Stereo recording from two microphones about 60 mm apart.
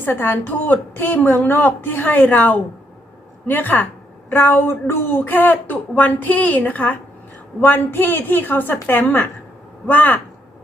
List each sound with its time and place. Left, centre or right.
0.0 s speech: left